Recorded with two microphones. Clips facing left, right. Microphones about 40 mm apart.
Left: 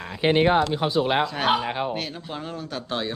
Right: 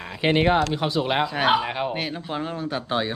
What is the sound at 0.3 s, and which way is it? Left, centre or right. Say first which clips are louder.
Speech: left 1 dB; right.